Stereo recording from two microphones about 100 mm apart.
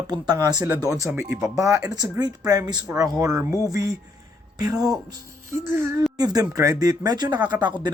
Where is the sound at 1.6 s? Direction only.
30° right (ahead or behind).